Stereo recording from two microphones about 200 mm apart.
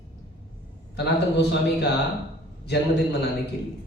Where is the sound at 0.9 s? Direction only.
55° left (ahead or behind).